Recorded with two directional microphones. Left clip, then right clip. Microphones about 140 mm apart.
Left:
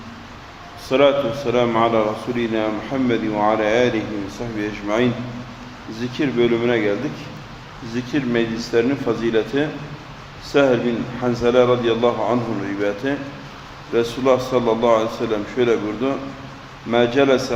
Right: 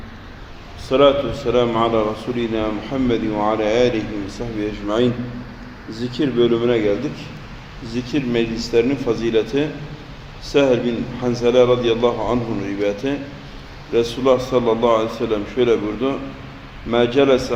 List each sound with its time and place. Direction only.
0.9 s a man's voice: 10° right (ahead or behind)
5.9 s speech: 5° right (ahead or behind)
7.9 s a man's voice: 10° right (ahead or behind)